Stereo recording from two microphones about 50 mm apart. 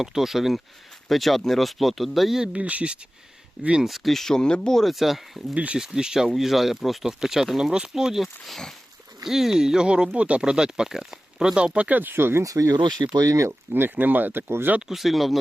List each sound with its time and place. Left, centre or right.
0.0 s speech: centre
2.4 s speech: centre
3.8 s speech: centre
5.5 s speech: right
5.8 s speech: centre
11.9 s speech: right
13.2 s speech: right
13.5 s speech: right
14.8 s speech: centre